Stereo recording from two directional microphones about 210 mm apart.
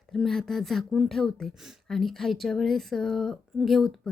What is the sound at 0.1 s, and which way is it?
Speech, centre (ahead or behind).